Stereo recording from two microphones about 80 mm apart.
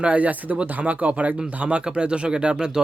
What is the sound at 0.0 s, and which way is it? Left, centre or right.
Speech, centre.